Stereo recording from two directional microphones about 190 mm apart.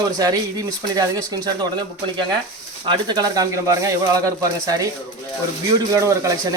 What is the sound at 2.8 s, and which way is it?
Speech, 25° right (ahead or behind).